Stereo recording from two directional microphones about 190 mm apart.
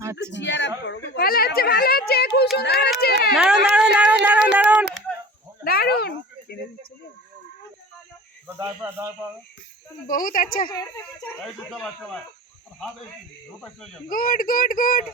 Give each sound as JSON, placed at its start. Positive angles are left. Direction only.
{"t": 0.0, "sound": "a sound", "side_deg": -15}
{"t": 0.3, "sound": "speech", "side_deg": 70}
{"t": 0.9, "sound": "speech", "side_deg": 55}
{"t": 2.6, "sound": "run", "side_deg": 60}
{"t": 3.3, "sound": "run", "side_deg": -5}
{"t": 3.8, "sound": "a sound", "side_deg": -5}
{"t": 5.6, "sound": "a sound", "side_deg": 55}
{"t": 8.4, "sound": "speech", "side_deg": -15}
{"t": 10.1, "sound": "speech", "side_deg": 45}
{"t": 10.7, "sound": "speech", "side_deg": 20}
{"t": 11.4, "sound": "speech", "side_deg": 0}
{"t": 14.1, "sound": "speech", "side_deg": 50}